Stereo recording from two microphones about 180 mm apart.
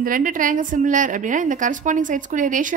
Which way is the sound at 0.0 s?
50° right (ahead or behind).